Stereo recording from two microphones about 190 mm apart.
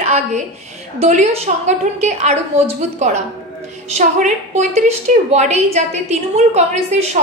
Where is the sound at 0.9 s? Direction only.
35° right (ahead or behind).